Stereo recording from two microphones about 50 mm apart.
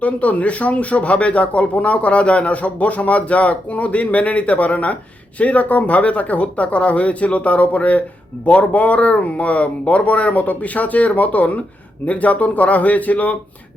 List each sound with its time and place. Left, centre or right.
0.0 s speech: left